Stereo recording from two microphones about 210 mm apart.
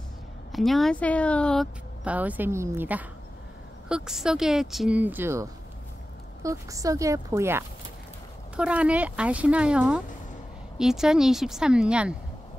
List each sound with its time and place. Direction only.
0.5 s speech: centre (ahead or behind)